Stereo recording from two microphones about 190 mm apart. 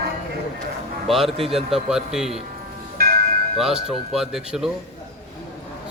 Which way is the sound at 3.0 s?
55° right (ahead or behind).